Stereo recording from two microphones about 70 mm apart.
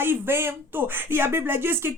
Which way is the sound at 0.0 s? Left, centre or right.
Right.